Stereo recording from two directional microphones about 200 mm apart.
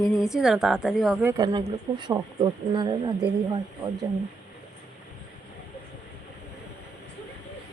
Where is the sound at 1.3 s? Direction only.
20° right (ahead or behind).